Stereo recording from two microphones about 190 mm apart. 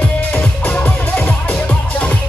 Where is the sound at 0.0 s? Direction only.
5° left (ahead or behind).